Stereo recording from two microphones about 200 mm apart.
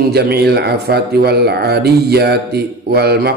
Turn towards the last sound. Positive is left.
turn(degrees=-55)  # may be behind; listen again after turning